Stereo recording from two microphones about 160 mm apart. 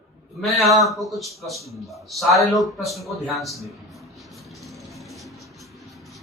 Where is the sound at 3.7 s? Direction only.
Centre (ahead or behind).